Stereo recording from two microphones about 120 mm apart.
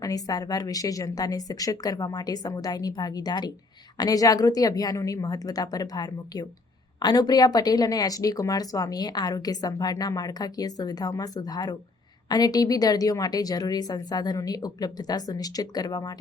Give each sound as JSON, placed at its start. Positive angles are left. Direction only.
{"t": 0.0, "sound": "speech", "side_deg": 30}